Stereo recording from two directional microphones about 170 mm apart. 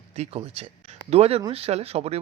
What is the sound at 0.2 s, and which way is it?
Speech, 40° right (ahead or behind).